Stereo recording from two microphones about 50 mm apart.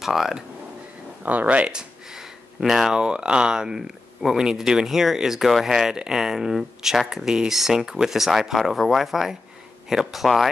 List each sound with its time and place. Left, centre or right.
0.0 s speech: centre
1.2 s speech: right
1.7 s speech: centre
3.0 s speech: centre